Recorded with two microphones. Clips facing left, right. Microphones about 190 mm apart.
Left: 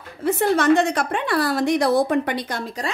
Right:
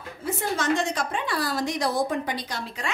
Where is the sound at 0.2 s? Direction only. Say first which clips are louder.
Left 9 dB; 65° left (ahead or behind).